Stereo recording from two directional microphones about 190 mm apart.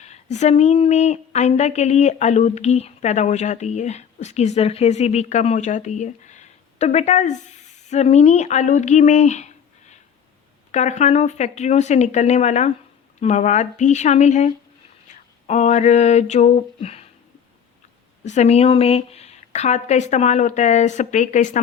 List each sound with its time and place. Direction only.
0.0 s a woman's voice: 35° left (ahead or behind)
10.7 s a woman's voice: 40° left (ahead or behind)
18.3 s a woman's voice: 35° left (ahead or behind)